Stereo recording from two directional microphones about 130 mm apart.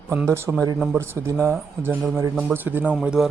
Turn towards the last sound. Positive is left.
turn(degrees=-5)  # may be behind; listen again after turning